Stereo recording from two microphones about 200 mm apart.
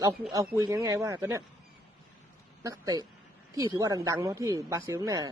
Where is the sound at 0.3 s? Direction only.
15° right (ahead or behind).